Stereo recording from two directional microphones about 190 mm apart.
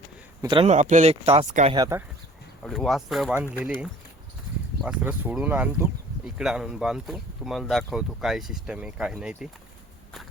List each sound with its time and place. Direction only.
0.4 s a man's voice: 25° right (ahead or behind)
0.7 s speech: 40° right (ahead or behind)
1.7 s a man's voice: 20° right (ahead or behind)
2.6 s speech: centre (ahead or behind)
4.8 s speech: 5° right (ahead or behind)